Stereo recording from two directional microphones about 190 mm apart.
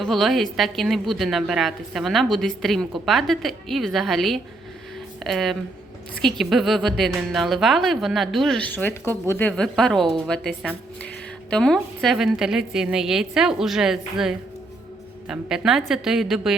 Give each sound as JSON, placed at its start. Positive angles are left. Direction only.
{"t": 0.0, "sound": "a woman's voice", "side_deg": 0}